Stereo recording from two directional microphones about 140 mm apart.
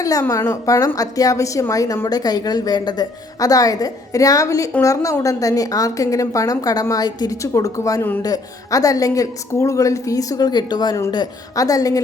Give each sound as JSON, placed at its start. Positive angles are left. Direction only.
{"t": 0.0, "sound": "a woman's voice", "side_deg": 20}